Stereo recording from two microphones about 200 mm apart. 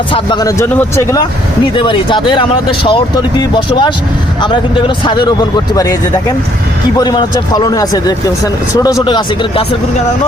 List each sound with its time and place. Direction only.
0.1 s speech: 20° left (ahead or behind)
1.7 s speech: 25° left (ahead or behind)